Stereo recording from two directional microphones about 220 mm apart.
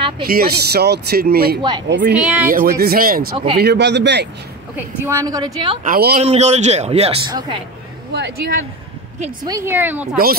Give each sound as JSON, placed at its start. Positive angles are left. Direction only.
{"t": 0.2, "sound": "a man's voice", "side_deg": -45}
{"t": 1.6, "sound": "a woman's voice", "side_deg": -20}
{"t": 1.9, "sound": "a man's voice", "side_deg": -50}
{"t": 2.1, "sound": "speech", "side_deg": -5}
{"t": 2.5, "sound": "a man's voice", "side_deg": -40}
{"t": 4.7, "sound": "a woman's voice", "side_deg": -10}
{"t": 5.9, "sound": "speech", "side_deg": -40}
{"t": 6.2, "sound": "a woman's voice", "side_deg": -30}
{"t": 8.1, "sound": "a man's voice", "side_deg": -45}
{"t": 9.4, "sound": "a woman's voice", "side_deg": -15}